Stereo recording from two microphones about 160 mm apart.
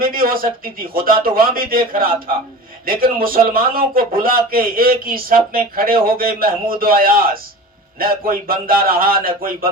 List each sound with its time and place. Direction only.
0.0 s a man's voice: 65° right (ahead or behind)